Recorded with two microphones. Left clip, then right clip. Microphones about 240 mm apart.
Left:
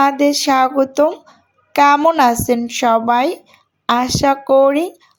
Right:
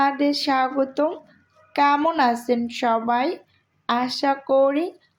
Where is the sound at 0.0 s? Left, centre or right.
Left.